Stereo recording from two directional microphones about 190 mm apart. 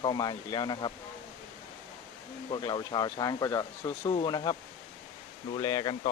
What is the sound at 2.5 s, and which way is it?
Speech, 25° left (ahead or behind).